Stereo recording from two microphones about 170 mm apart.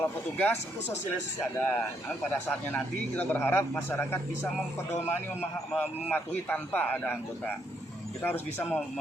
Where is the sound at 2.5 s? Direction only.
10° left (ahead or behind).